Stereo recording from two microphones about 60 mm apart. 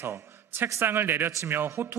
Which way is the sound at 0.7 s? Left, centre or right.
Right.